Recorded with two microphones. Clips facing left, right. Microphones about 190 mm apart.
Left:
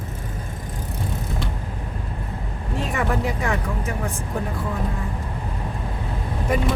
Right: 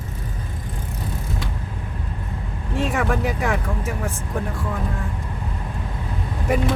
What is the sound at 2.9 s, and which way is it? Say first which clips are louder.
Vehicle: right 1 dB; 80° right.